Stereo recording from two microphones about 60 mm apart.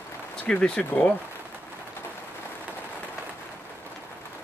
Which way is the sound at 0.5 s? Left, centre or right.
Centre.